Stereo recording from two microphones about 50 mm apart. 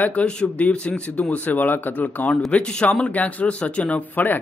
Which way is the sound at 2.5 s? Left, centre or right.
Left.